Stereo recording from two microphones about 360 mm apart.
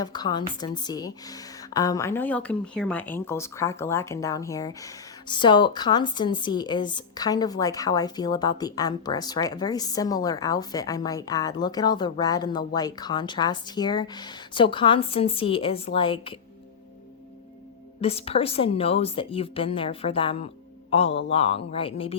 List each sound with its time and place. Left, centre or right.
0.0 s a woman's voice: centre
18.0 s a woman's voice: centre